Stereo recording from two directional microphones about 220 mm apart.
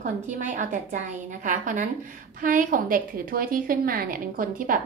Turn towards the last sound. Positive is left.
turn(degrees=-40)  # may be behind; listen again after turning